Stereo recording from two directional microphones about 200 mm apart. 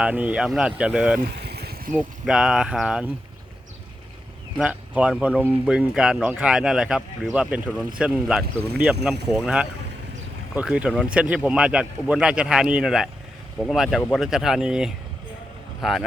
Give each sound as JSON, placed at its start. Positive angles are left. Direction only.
{"t": 0.0, "sound": "speech", "side_deg": -5}
{"t": 1.2, "sound": "vehicle", "side_deg": -55}
{"t": 2.0, "sound": "speech", "side_deg": -5}
{"t": 4.6, "sound": "speech", "side_deg": -5}